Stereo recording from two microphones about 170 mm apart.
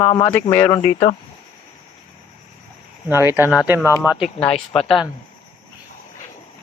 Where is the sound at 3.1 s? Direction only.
15° right (ahead or behind).